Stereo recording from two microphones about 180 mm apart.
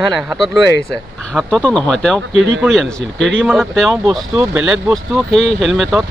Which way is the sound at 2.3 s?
90° right.